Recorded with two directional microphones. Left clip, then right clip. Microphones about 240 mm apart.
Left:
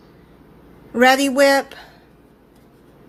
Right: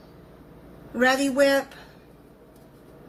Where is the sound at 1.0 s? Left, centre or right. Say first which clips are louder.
Left 7 dB; left.